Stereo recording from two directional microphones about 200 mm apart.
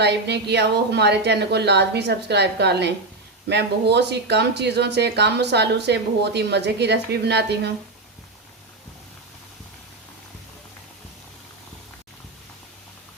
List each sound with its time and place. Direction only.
0.0 s speech: 55° right (ahead or behind)